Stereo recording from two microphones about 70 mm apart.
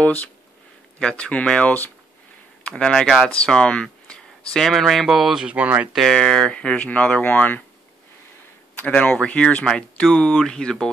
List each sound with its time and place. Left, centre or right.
0.0 s speech: left
2.6 s speech: centre
4.6 s speech: centre
5.4 s speech: right
5.9 s speech: centre; by 7.6 s left
8.7 s speech: left